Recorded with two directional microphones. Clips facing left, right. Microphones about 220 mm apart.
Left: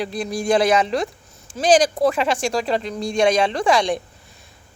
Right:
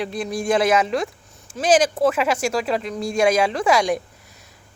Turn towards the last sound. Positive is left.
turn(degrees=-10)  # may be behind; listen again after turning